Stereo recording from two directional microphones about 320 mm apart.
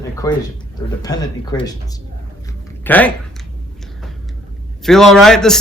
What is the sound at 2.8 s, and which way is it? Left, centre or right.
Speech, centre.